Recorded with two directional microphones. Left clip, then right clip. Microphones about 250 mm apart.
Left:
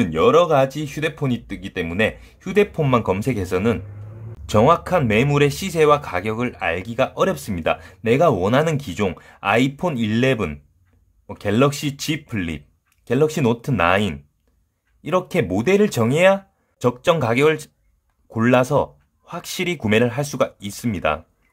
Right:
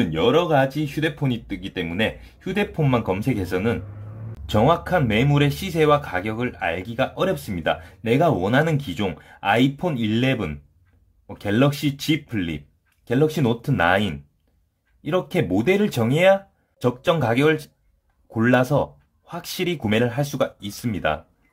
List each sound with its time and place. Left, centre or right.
0.0 s speech: left